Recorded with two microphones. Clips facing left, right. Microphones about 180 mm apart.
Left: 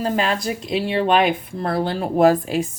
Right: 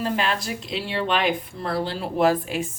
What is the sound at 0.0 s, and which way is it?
Speech, 40° left (ahead or behind).